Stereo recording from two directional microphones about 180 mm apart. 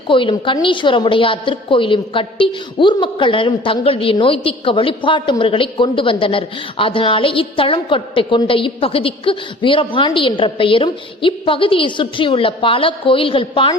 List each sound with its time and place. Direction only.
0.1 s a woman's voice: 30° left (ahead or behind)